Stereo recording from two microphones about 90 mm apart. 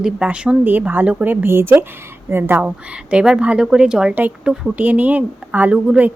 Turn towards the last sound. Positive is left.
turn(degrees=-15)  # may be behind; listen again after turning